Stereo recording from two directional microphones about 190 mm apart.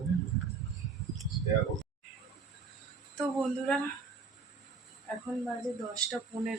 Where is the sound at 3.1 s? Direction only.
5° left (ahead or behind).